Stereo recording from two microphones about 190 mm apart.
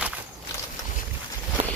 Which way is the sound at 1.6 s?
40° right (ahead or behind).